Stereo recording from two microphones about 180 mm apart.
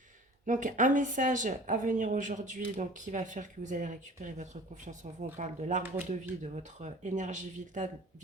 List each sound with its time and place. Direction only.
0.4 s a woman's voice: 45° right (ahead or behind)